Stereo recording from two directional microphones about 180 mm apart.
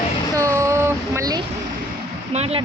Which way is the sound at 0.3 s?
15° right (ahead or behind).